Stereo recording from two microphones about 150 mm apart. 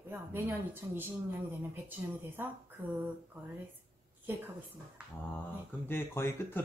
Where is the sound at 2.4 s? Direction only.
10° right (ahead or behind).